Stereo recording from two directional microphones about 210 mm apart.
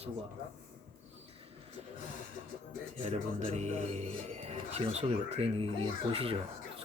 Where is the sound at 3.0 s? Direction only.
30° right (ahead or behind).